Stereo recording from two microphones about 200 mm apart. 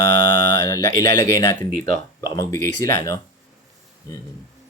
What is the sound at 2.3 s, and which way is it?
Speech, 15° left (ahead or behind).